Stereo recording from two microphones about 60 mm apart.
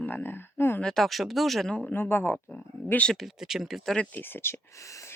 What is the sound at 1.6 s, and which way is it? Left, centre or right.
Speech, centre.